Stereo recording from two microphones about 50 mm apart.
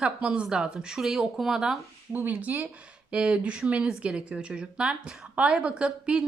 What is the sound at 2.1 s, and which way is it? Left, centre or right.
Speech, right.